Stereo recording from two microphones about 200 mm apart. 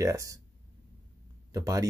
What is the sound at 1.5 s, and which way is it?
Speech, 15° right (ahead or behind).